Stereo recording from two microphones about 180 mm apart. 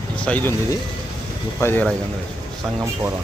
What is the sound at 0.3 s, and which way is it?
Speech, 10° left (ahead or behind).